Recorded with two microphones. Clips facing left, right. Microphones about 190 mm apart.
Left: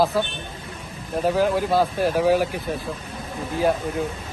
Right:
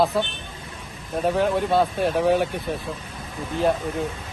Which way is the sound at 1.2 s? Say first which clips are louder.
Left 1 dB; centre (ahead or behind).